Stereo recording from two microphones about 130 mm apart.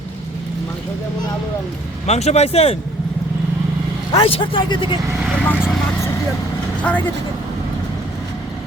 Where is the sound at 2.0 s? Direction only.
55° left (ahead or behind).